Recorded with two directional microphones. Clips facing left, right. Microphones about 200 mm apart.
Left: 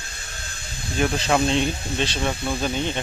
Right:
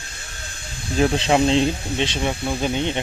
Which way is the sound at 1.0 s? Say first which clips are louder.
Right 3 dB; 25° right (ahead or behind).